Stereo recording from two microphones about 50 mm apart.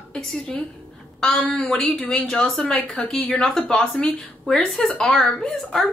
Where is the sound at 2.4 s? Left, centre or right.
Centre.